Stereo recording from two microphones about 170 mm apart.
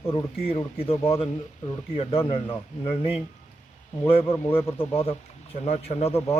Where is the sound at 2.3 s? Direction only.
35° left (ahead or behind).